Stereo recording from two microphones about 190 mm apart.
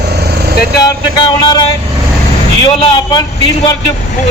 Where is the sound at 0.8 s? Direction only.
20° left (ahead or behind).